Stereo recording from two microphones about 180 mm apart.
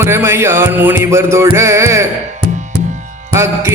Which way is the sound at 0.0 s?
15° right (ahead or behind).